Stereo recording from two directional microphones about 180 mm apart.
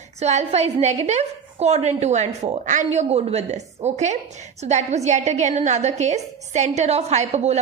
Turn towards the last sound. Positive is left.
turn(degrees=-40)  # may be behind; listen again after turning